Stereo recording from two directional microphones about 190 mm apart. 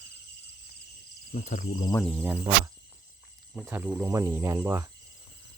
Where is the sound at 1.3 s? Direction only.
40° left (ahead or behind).